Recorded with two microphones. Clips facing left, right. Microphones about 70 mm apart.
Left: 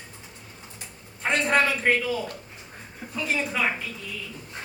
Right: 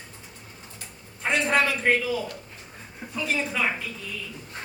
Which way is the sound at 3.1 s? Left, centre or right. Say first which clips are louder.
Even; centre.